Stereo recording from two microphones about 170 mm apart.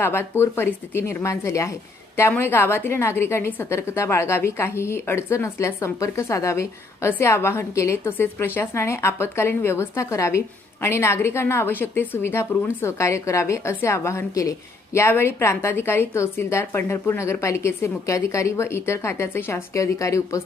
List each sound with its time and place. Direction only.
0.0 s speech: 15° left (ahead or behind)